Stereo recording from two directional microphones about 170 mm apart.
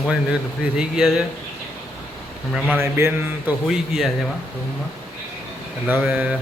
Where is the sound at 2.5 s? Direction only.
10° right (ahead or behind).